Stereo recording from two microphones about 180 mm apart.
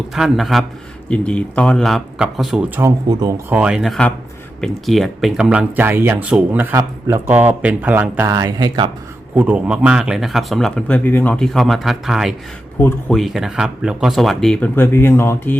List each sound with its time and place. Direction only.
0.1 s speech: centre (ahead or behind)
3.6 s speech: 5° right (ahead or behind); by 8.9 s 25° right (ahead or behind)
9.3 s speech: 5° right (ahead or behind); by 15.5 s 15° left (ahead or behind)